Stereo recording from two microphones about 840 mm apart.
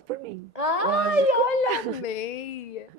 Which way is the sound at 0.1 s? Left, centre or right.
Right.